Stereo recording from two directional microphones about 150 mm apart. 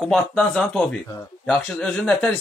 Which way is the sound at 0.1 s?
5° left (ahead or behind).